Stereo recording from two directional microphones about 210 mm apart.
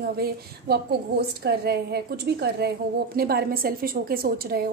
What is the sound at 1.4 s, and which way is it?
A woman's voice, 50° right (ahead or behind).